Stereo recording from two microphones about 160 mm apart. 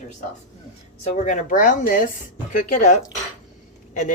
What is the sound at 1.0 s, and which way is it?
Speech, 45° left (ahead or behind).